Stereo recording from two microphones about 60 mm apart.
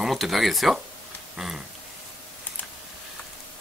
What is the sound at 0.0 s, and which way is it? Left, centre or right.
A man's voice, centre.